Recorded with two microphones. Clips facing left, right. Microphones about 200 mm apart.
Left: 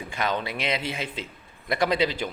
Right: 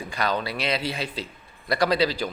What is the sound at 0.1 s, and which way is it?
A man's voice, 20° left (ahead or behind).